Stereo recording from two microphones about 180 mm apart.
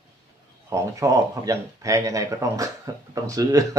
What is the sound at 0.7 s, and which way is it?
Speech, 15° right (ahead or behind).